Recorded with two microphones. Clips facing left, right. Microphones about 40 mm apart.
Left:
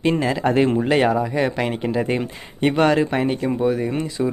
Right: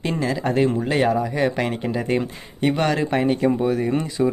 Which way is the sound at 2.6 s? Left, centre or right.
Centre.